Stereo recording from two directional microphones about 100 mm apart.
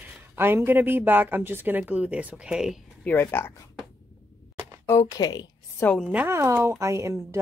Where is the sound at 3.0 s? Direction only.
20° left (ahead or behind).